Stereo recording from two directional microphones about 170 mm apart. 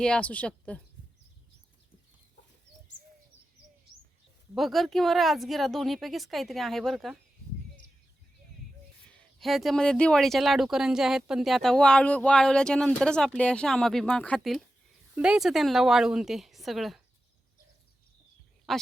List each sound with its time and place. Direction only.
0.0 s a woman's voice: 5° left (ahead or behind)
4.5 s speech: centre (ahead or behind)
9.0 s speech: 5° left (ahead or behind)
18.7 s speech: centre (ahead or behind)